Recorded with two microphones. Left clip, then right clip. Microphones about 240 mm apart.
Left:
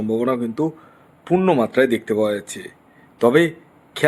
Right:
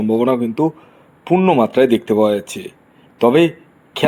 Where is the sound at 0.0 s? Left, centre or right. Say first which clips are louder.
Right 5 dB; centre.